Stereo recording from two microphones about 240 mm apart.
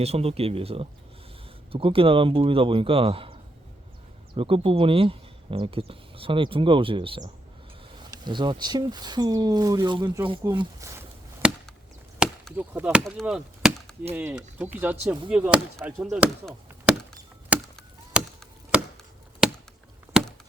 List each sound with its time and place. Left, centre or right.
0.0 s speech: right
4.4 s speech: right
12.2 s chop: centre
14.1 s speech: centre
16.0 s chop: centre
19.4 s chop: centre